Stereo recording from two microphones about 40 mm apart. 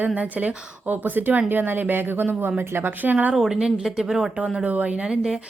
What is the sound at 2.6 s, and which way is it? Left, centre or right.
Speech, right.